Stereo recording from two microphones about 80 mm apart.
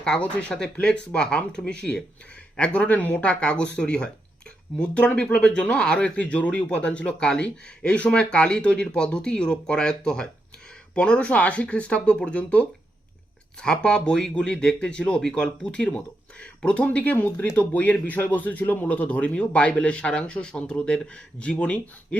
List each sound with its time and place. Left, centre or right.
0.0 s speech: centre